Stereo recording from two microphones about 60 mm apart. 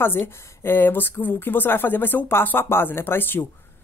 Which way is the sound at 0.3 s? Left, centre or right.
Left.